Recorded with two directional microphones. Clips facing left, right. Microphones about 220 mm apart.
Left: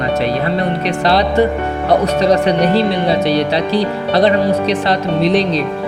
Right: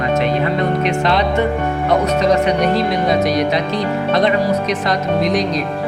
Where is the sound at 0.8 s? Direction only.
35° left (ahead or behind).